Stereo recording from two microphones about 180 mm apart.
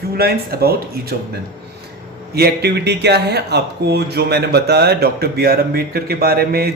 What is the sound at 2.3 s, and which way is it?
Speech, 65° right (ahead or behind).